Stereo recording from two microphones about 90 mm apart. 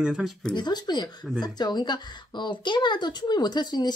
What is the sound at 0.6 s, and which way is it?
A woman's voice, 50° left (ahead or behind).